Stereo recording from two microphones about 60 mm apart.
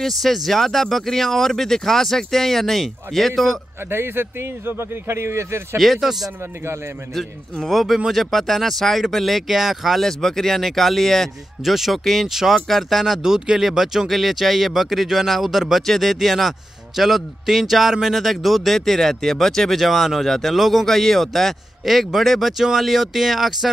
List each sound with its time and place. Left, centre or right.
0.0 s speech: centre
3.9 s speech: right
5.8 s speech: centre